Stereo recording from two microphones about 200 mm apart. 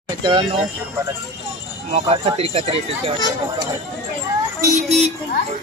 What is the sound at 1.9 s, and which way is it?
Speech, 30° right (ahead or behind).